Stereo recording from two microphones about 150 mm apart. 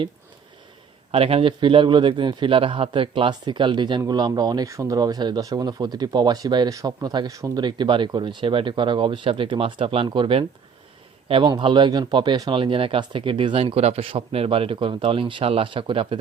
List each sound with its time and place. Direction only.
1.1 s a man's voice: 40° right (ahead or behind)